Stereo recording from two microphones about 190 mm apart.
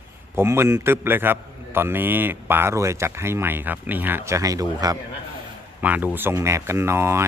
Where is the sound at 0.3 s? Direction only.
15° right (ahead or behind).